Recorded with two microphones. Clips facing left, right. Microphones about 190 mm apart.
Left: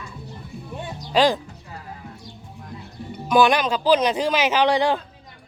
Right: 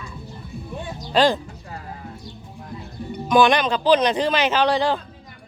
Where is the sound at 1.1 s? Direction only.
10° left (ahead or behind).